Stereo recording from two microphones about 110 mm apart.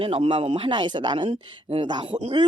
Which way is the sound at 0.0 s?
60° right (ahead or behind).